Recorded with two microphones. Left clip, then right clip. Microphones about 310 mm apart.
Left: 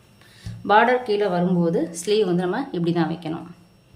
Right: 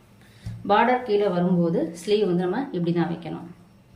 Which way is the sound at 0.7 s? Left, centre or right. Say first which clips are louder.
Left 3 dB; centre.